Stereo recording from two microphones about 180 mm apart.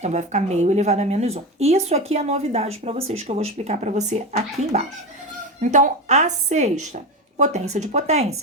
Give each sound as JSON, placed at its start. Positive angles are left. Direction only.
{"t": 0.0, "sound": "a woman's voice", "side_deg": -40}